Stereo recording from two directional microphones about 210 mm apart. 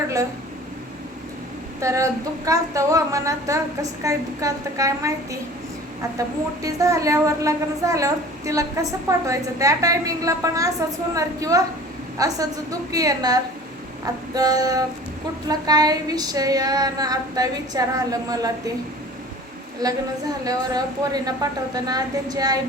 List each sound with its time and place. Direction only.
1.8 s a woman's voice: 15° right (ahead or behind)
19.8 s a woman's voice: 20° right (ahead or behind)